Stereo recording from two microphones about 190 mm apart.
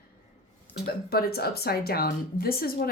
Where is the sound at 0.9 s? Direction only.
55° left (ahead or behind).